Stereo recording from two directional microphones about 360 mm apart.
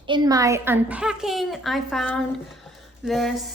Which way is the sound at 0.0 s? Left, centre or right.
Centre.